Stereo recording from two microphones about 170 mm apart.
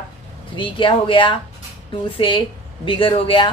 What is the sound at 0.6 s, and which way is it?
A woman's voice, 30° left (ahead or behind).